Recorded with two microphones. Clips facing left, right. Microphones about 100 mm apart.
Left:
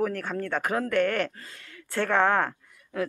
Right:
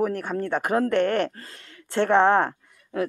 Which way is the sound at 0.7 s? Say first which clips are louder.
Right 4 dB; 30° right (ahead or behind).